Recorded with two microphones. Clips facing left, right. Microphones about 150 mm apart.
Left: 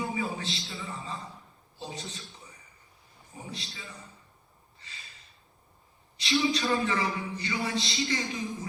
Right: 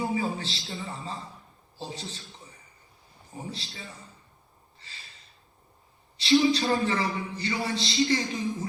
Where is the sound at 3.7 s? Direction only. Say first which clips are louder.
Right 2 dB; 40° right (ahead or behind).